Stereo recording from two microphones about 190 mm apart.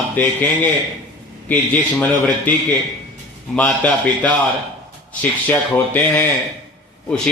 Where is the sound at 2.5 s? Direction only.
10° left (ahead or behind).